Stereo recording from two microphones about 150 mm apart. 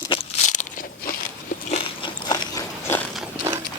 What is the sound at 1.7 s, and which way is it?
Biting, 30° left (ahead or behind).